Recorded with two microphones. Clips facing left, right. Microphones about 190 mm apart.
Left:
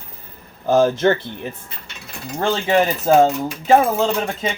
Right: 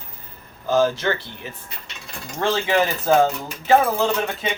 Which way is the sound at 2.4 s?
30° left (ahead or behind).